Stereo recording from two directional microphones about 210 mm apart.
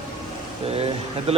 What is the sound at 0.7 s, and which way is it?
Speech, 30° right (ahead or behind).